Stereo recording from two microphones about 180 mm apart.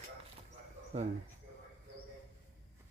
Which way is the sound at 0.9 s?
35° right (ahead or behind).